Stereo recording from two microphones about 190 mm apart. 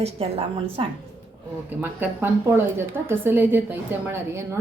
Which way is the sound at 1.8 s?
10° right (ahead or behind).